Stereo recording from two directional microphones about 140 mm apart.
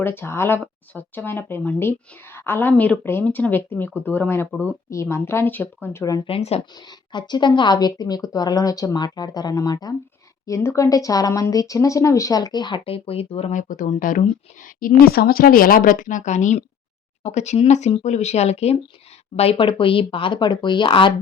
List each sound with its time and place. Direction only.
0.0 s speech: 15° left (ahead or behind)
6.2 s speech: 45° left (ahead or behind)
6.7 s a woman's voice: 30° left (ahead or behind)